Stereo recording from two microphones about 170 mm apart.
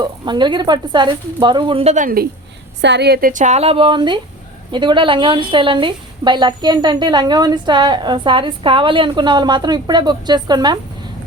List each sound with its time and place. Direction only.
0.0 s a woman's voice: 25° right (ahead or behind)
2.8 s a woman's voice: 85° right; by 10.8 s 25° right (ahead or behind)